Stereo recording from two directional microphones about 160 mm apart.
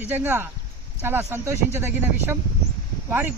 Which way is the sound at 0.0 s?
15° right (ahead or behind).